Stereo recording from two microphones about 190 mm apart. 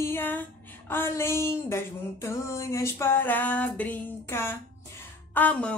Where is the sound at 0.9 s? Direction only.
10° left (ahead or behind).